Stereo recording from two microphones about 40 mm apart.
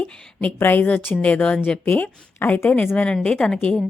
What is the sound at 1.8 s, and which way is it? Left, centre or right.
Speech, left.